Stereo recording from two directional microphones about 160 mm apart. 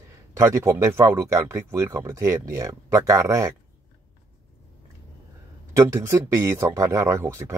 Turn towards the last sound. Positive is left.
turn(degrees=-15)  # may be behind; listen again after turning